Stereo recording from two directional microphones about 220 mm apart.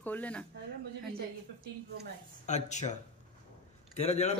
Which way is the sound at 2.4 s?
30° left (ahead or behind).